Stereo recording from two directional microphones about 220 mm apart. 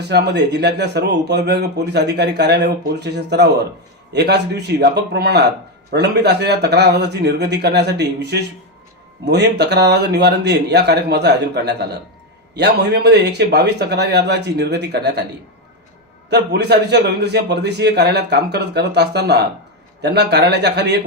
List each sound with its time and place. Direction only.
0.1 s speech: 50° right (ahead or behind)
16.3 s speech: 50° right (ahead or behind)